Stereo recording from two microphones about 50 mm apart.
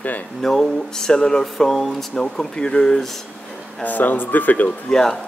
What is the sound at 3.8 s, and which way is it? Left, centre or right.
Speech, left.